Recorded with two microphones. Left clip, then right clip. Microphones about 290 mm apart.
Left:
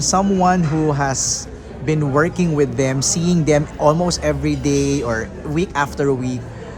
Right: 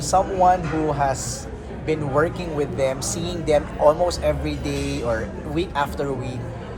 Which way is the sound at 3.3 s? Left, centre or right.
Left.